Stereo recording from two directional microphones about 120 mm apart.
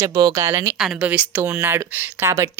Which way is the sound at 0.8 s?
10° right (ahead or behind).